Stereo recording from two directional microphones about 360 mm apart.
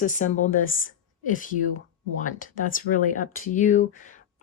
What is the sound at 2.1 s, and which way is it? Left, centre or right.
Speech, left.